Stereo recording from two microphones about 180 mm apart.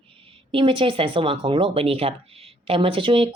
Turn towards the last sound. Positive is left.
turn(degrees=-30)  # may be behind; listen again after turning